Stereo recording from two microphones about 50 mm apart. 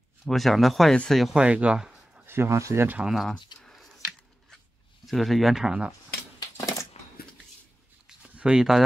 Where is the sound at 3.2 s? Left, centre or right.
Centre.